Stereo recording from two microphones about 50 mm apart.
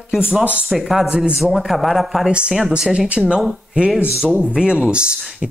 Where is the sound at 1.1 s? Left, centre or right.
Centre.